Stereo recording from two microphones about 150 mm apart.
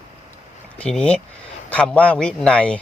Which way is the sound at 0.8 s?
5° left (ahead or behind).